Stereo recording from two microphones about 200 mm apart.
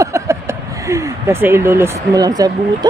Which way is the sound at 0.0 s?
15° right (ahead or behind).